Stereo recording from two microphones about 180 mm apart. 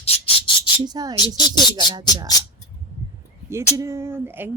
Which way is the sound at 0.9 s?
20° right (ahead or behind).